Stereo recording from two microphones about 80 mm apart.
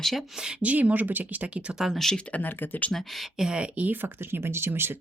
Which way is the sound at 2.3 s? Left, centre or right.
Centre.